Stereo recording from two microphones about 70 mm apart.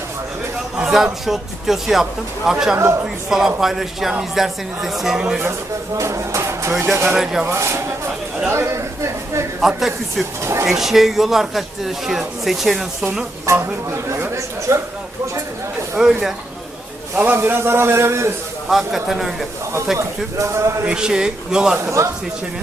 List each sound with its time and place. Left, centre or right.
0.8 s a man's voice: centre
5.9 s a man's voice: right
9.6 s a man's voice: centre
10.4 s a man's voice: right
10.7 s a man's voice: centre
13.4 s a man's voice: right
16.0 s speech: centre
17.2 s a man's voice: right
18.7 s a man's voice: centre
20.0 s a man's voice: right
20.8 s speech: centre
21.8 s a man's voice: right